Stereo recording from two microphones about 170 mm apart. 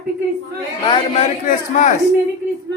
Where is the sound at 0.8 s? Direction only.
30° left (ahead or behind).